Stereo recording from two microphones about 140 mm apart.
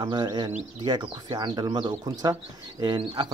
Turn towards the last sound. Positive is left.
turn(degrees=-35)  # may be behind; listen again after turning